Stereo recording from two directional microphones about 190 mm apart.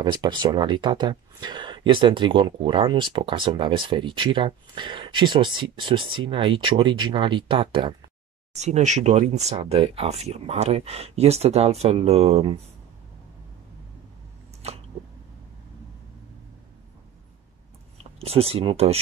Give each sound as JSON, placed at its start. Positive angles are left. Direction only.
{"t": 0.0, "sound": "speech", "side_deg": -20}
{"t": 8.5, "sound": "speech", "side_deg": -35}
{"t": 17.9, "sound": "speech", "side_deg": -30}